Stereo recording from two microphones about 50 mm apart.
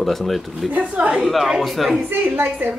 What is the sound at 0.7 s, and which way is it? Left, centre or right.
Speech, right.